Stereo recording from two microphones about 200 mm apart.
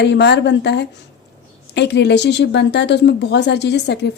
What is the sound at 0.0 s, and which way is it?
Speech, 60° left (ahead or behind).